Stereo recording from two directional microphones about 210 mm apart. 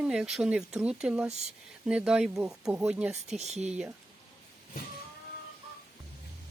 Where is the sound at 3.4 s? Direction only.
30° right (ahead or behind).